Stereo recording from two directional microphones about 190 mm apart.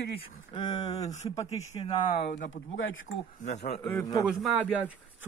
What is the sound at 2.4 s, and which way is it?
Speech, 85° left.